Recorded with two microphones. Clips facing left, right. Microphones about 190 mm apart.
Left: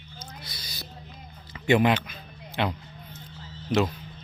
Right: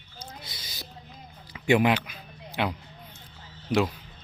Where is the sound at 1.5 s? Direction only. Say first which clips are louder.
Left 1 dB; 10° right (ahead or behind).